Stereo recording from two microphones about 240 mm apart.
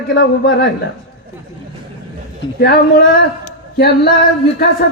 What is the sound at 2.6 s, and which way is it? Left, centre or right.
A man's voice, left.